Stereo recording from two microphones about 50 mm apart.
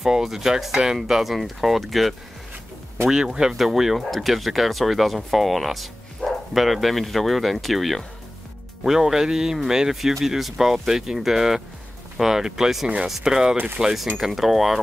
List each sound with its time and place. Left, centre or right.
0.0 s speech: centre
3.1 s speech: centre
12.8 s speech: centre